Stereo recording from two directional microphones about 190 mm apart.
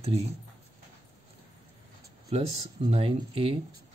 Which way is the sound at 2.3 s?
35° right (ahead or behind).